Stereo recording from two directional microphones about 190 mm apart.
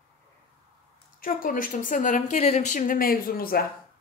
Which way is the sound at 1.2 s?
45° left (ahead or behind).